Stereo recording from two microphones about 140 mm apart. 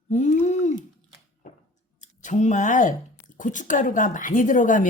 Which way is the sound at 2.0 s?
60° left (ahead or behind).